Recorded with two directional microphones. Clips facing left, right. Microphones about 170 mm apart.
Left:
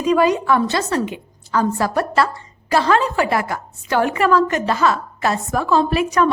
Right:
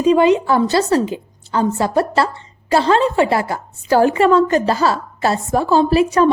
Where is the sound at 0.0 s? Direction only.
25° right (ahead or behind).